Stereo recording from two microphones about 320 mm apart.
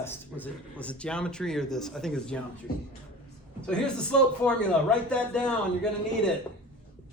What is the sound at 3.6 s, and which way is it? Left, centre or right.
A man's voice, centre.